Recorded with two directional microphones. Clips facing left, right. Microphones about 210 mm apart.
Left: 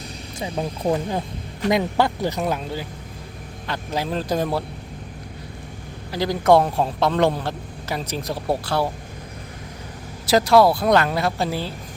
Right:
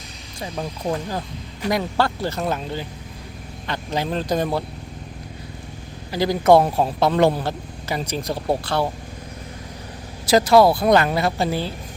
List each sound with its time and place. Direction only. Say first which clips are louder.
0.3 s a man's voice: left 2 dB; 25° left (ahead or behind); by 4.6 s 5° left (ahead or behind)
6.1 s a man's voice: right 2 dB; centre (ahead or behind)
10.2 s a man's voice: right 1 dB; centre (ahead or behind)